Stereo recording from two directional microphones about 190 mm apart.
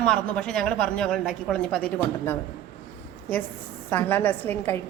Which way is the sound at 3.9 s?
10° left (ahead or behind).